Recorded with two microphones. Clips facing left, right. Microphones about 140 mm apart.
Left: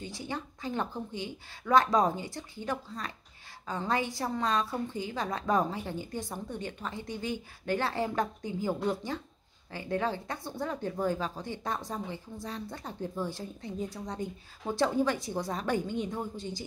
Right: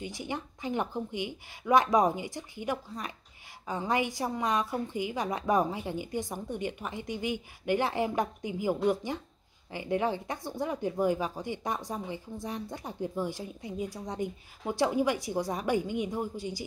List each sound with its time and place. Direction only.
0.0 s a woman's voice: 15° right (ahead or behind)